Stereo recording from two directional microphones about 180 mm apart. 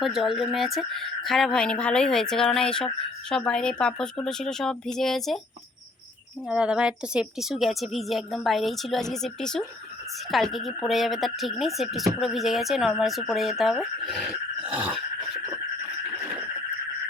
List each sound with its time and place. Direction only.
0.0 s speech: centre (ahead or behind)
6.5 s speech: 5° right (ahead or behind)